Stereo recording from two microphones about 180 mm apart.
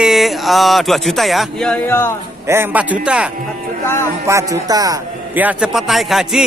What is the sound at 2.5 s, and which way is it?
Speech, 10° right (ahead or behind).